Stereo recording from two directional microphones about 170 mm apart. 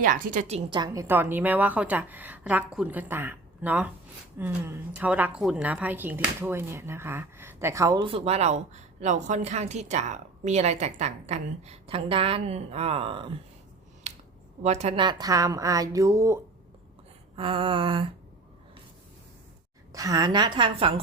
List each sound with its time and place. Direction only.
0.0 s a woman's voice: 50° right (ahead or behind)
0.7 s speech: 25° right (ahead or behind)
1.0 s a woman's voice: 15° right (ahead or behind)
8.1 s a woman's voice: 40° right (ahead or behind)
14.6 s a woman's voice: 40° right (ahead or behind)
15.0 s speech: 20° right (ahead or behind)
17.3 s a woman's voice: 30° right (ahead or behind)
19.9 s speech: 20° right (ahead or behind)